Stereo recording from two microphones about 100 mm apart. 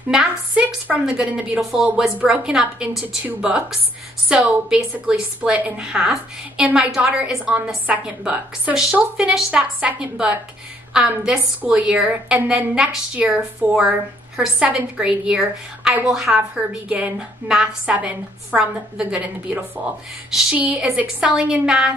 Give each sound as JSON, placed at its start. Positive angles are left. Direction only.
{"t": 0.1, "sound": "a woman's voice", "side_deg": -5}